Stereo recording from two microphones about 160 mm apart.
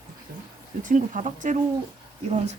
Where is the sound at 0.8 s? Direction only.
55° right (ahead or behind).